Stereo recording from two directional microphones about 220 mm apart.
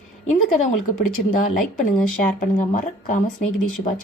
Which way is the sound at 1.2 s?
35° left (ahead or behind).